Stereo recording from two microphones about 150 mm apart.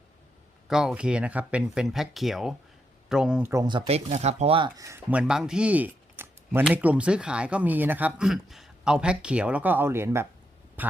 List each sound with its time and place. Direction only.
0.7 s speech: 5° right (ahead or behind)
3.5 s speech: 25° right (ahead or behind)
4.8 s speech: 20° right (ahead or behind)
5.1 s speech: 5° right (ahead or behind)